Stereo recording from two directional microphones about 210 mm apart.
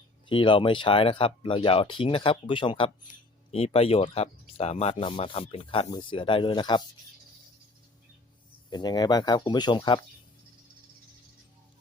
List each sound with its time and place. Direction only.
0.3 s speech: 25° left (ahead or behind)
8.7 s speech: 20° left (ahead or behind)